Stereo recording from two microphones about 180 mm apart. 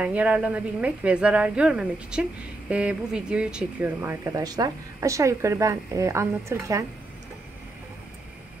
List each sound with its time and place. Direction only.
0.0 s speech: 10° right (ahead or behind)